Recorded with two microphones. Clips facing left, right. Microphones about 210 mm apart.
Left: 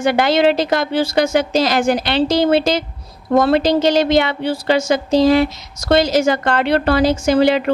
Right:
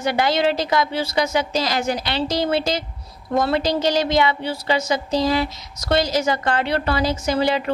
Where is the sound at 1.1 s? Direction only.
80° left.